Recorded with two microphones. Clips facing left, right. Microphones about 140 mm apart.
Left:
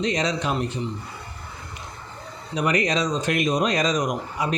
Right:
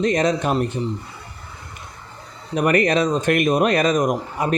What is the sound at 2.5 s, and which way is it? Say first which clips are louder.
Speech: right 5 dB; 55° right (ahead or behind).